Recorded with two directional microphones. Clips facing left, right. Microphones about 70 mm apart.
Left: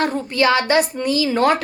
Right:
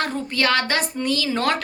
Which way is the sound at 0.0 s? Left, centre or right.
Centre.